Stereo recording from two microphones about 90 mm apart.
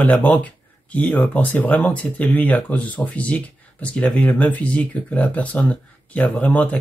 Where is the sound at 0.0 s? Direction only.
15° left (ahead or behind).